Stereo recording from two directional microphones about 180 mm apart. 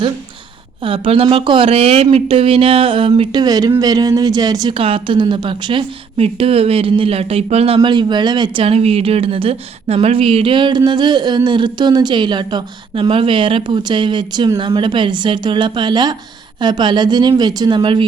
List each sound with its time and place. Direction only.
0.8 s speech: 30° right (ahead or behind)